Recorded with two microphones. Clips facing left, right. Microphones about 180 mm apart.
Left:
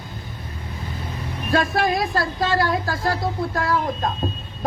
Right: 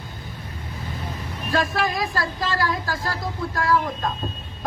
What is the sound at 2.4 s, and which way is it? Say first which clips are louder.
Speech: left 5 dB; 60° left (ahead or behind).